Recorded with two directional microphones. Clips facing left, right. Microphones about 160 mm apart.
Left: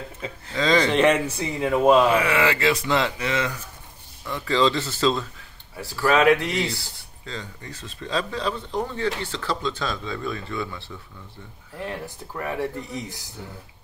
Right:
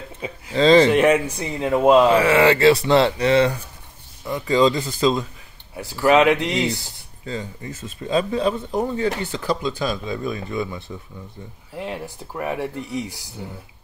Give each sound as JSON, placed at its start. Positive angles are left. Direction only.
{"t": 0.2, "sound": "speech", "side_deg": -15}
{"t": 0.6, "sound": "speech", "side_deg": -25}
{"t": 0.9, "sound": "speech", "side_deg": -10}
{"t": 2.1, "sound": "speech", "side_deg": -35}
{"t": 4.2, "sound": "speech", "side_deg": -15}